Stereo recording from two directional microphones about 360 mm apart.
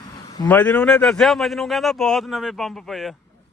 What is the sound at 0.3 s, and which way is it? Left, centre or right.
Speech, centre.